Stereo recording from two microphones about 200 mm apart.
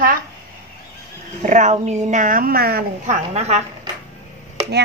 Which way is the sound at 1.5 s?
35° right (ahead or behind).